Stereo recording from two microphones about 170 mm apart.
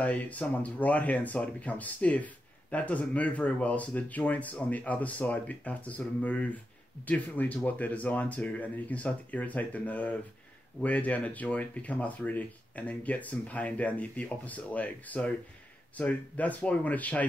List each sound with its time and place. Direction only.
0.0 s speech: 10° left (ahead or behind)